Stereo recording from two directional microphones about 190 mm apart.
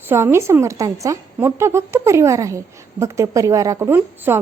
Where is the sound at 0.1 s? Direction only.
15° right (ahead or behind).